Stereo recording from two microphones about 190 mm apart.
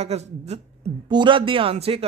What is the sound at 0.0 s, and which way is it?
Speech, 35° right (ahead or behind).